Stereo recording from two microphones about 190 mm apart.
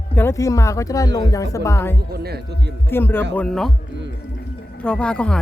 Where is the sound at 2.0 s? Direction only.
55° right (ahead or behind).